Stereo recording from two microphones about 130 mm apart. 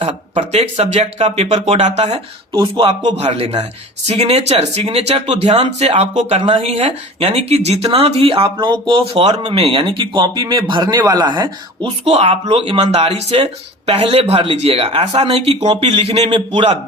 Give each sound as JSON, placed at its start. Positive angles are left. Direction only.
{"t": 0.1, "sound": "speech", "side_deg": -55}
{"t": 2.5, "sound": "speech", "side_deg": -30}
{"t": 2.8, "sound": "speech", "side_deg": -60}
{"t": 6.4, "sound": "speech", "side_deg": -45}
{"t": 12.2, "sound": "speech", "side_deg": -50}